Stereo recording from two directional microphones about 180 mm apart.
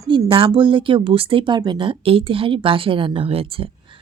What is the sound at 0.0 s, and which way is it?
Speech, 20° right (ahead or behind).